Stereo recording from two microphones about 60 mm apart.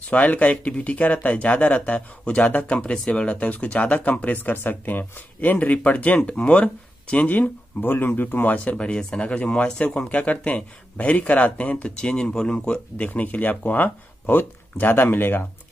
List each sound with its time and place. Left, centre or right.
0.1 s speech: left
8.7 s speech: centre
10.0 s speech: left